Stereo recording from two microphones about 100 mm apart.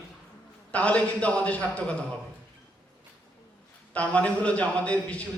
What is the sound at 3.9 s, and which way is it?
A man's voice, 15° left (ahead or behind).